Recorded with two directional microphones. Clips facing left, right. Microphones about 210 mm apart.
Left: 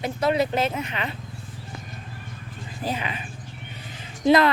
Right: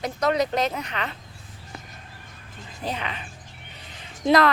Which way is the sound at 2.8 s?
5° left (ahead or behind).